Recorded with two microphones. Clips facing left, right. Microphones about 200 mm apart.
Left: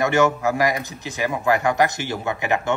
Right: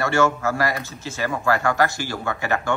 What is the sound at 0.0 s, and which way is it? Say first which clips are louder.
A man's voice: left 2 dB; 15° left (ahead or behind).